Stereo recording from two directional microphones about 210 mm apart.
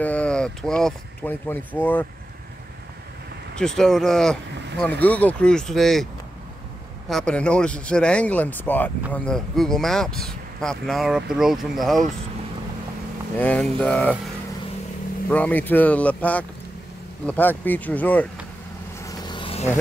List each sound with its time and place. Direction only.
0.0 s speech: 5° left (ahead or behind)
3.5 s speech: 5° left (ahead or behind)
7.1 s speech: 5° left (ahead or behind)
13.4 s speech: 5° left (ahead or behind)
15.2 s speech: 5° left (ahead or behind)
18.9 s vehicle: 15° left (ahead or behind)